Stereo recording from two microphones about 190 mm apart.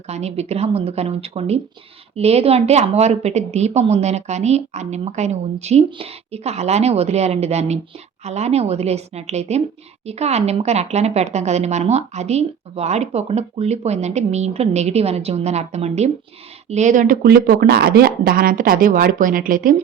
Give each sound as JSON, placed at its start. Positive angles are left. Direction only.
{"t": 0.1, "sound": "speech", "side_deg": -35}